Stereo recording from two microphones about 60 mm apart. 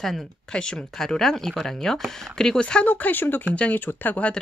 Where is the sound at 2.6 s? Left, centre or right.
Left.